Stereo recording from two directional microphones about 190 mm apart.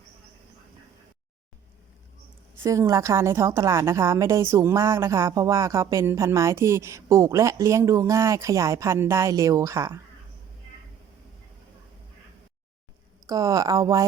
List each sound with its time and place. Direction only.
2.6 s a woman's voice: 15° right (ahead or behind)
13.2 s speech: 15° right (ahead or behind)